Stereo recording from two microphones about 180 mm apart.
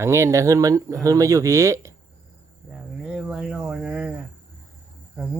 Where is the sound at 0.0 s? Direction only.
15° right (ahead or behind).